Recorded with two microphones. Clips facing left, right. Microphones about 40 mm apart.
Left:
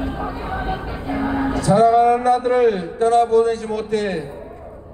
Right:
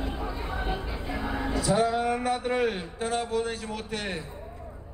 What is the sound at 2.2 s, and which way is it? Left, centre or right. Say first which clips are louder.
A man's voice: left 11 dB; centre.